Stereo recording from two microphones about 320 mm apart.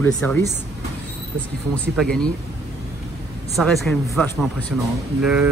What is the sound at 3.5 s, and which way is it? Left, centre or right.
A man's voice, centre.